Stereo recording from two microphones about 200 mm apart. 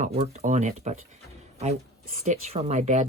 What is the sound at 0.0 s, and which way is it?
Speech, 35° right (ahead or behind).